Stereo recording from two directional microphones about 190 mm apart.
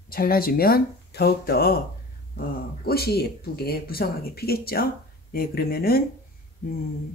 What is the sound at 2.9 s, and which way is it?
Speech, 55° left (ahead or behind).